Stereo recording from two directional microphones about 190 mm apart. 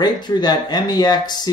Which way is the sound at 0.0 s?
20° left (ahead or behind).